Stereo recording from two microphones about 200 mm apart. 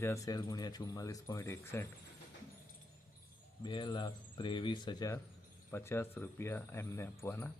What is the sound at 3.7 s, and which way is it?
Speech, 25° left (ahead or behind).